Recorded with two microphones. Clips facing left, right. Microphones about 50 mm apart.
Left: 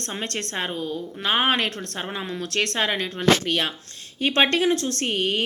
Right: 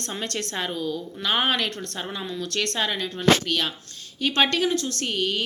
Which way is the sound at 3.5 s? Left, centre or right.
Left.